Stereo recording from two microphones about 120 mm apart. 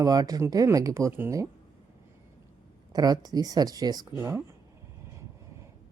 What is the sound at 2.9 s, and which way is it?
Speech, 35° right (ahead or behind).